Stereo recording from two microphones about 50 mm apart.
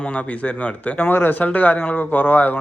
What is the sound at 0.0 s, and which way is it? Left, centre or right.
Speech, left.